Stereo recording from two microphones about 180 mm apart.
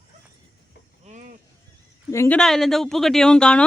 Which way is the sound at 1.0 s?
45° right (ahead or behind).